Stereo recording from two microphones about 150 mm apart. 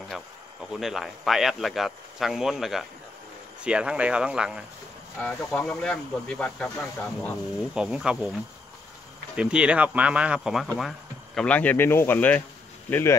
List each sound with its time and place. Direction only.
0.1 s speech: centre (ahead or behind)
5.2 s speech: 5° left (ahead or behind)
7.7 s speech: 5° right (ahead or behind)
9.3 s speech: 5° right (ahead or behind); by 12.4 s 10° left (ahead or behind)